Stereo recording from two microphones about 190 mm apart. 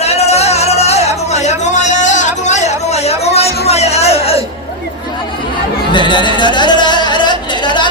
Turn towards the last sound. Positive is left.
turn(degrees=25)  # may be behind; listen again after turning